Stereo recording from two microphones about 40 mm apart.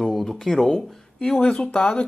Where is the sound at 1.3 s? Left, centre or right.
Left.